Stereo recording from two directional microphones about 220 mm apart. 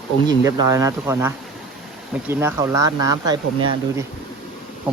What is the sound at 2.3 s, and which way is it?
Speech, 10° right (ahead or behind).